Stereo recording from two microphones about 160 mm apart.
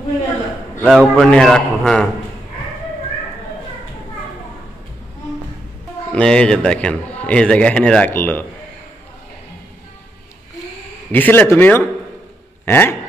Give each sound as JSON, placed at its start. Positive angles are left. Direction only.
{"t": 0.8, "sound": "a man's voice", "side_deg": 0}
{"t": 6.1, "sound": "a man's voice", "side_deg": 5}
{"t": 11.1, "sound": "a man's voice", "side_deg": 10}